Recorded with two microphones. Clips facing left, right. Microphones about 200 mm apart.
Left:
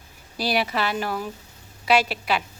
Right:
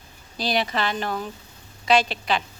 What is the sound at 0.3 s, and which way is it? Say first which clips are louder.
A woman's voice: even; 10° left (ahead or behind).